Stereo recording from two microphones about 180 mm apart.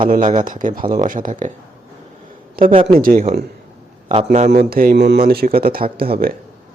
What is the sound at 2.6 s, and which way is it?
Speech, 55° right (ahead or behind).